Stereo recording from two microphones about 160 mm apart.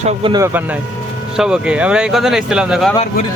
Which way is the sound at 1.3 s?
5° right (ahead or behind).